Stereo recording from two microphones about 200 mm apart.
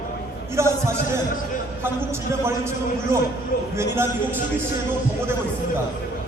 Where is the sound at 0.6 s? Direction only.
15° right (ahead or behind).